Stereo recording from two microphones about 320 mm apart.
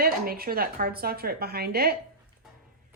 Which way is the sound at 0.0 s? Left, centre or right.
Right.